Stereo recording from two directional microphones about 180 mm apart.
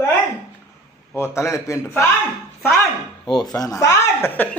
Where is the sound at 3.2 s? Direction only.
Centre (ahead or behind).